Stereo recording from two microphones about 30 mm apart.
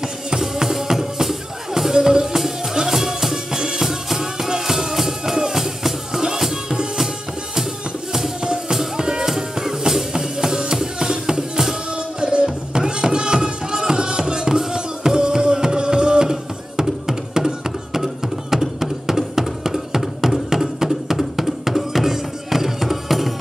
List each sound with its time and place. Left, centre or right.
0.4 s music: centre
6.5 s music: right
8.4 s music: right
11.9 s music: right; by 23.3 s centre